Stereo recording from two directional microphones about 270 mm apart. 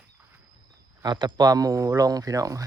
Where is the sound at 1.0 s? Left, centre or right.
Centre.